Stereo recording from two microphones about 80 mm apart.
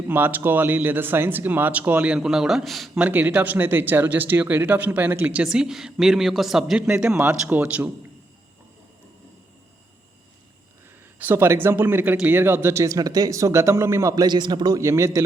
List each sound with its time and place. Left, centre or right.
0.1 s speech: right
2.1 s speech: centre
3.0 s speech: right
5.3 s speech: centre
11.2 s speech: right
14.3 s a man's voice: right
14.8 s speech: right